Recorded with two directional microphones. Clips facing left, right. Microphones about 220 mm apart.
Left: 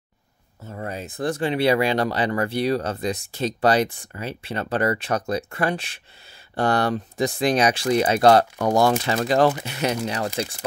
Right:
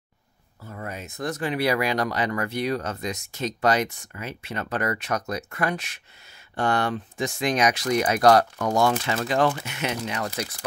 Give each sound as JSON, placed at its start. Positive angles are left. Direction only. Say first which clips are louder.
{"t": 0.6, "sound": "speech", "louder": "left 4 dB", "side_deg": 25}